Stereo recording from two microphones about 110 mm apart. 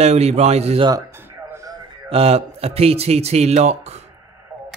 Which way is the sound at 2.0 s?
65° right (ahead or behind).